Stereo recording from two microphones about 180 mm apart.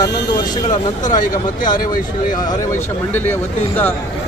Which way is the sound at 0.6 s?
45° left (ahead or behind).